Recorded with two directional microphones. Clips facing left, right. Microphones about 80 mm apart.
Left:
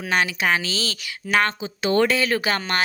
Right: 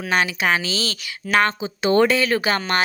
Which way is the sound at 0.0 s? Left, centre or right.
Centre.